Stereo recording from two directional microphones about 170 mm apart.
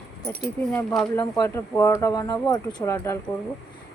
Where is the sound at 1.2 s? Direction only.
20° left (ahead or behind).